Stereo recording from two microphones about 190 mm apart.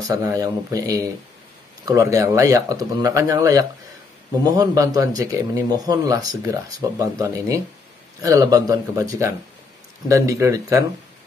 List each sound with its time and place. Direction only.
0.1 s a man's voice: 15° right (ahead or behind)